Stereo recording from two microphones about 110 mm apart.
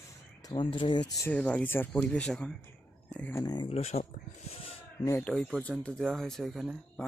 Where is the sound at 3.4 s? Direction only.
40° left (ahead or behind).